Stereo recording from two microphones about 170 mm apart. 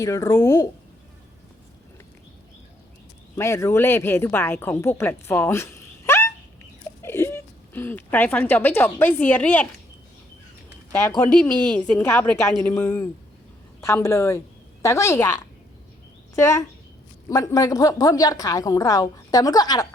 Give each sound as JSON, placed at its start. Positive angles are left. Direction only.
{"t": 0.0, "sound": "a woman's voice", "side_deg": 20}
{"t": 3.3, "sound": "speech", "side_deg": 15}
{"t": 11.2, "sound": "a woman's voice", "side_deg": 5}